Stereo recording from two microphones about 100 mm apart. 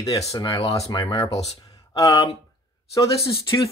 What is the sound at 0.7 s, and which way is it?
Speech, 40° left (ahead or behind).